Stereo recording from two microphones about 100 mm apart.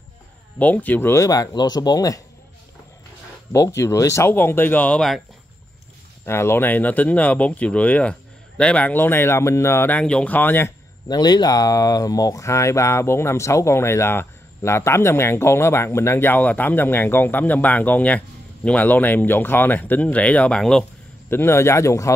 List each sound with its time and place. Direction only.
0.6 s speech: 15° left (ahead or behind); by 2.2 s 35° left (ahead or behind)
3.5 s speech: 30° left (ahead or behind); by 5.0 s 15° left (ahead or behind)
6.2 s speech: 25° left (ahead or behind)
11.1 s speech: 45° left (ahead or behind); by 20.8 s 5° left (ahead or behind)
21.3 s speech: 25° left (ahead or behind)